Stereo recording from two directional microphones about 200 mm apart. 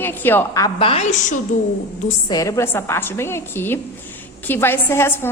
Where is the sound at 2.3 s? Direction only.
15° left (ahead or behind).